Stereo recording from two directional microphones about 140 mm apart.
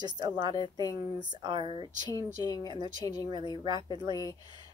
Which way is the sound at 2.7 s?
30° right (ahead or behind).